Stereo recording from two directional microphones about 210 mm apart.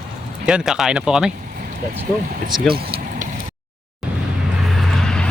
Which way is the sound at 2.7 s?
45° right (ahead or behind).